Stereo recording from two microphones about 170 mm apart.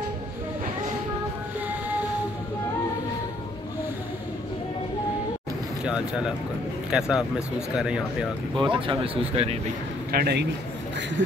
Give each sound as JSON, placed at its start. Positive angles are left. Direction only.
{"t": 1.7, "sound": "music", "side_deg": -10}
{"t": 6.9, "sound": "speech", "side_deg": -5}
{"t": 8.6, "sound": "speech", "side_deg": -30}
{"t": 10.1, "sound": "a man's voice", "side_deg": -70}